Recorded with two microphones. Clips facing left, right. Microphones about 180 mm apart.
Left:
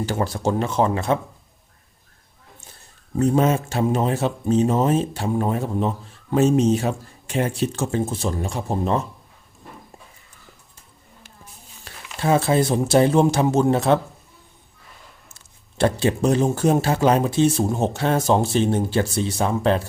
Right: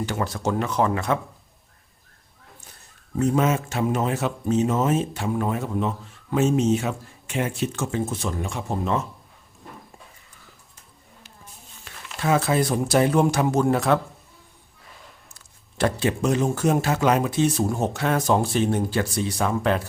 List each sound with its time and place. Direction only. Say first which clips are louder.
0.0 s speech: left 3 dB; 30° left (ahead or behind)
3.2 s speech: left 3 dB; 30° left (ahead or behind)
11.9 s a sound: left 2 dB; 35° left (ahead or behind)
12.2 s speech: left 3 dB; 30° left (ahead or behind)
15.3 s speech: left 1 dB; 25° left (ahead or behind)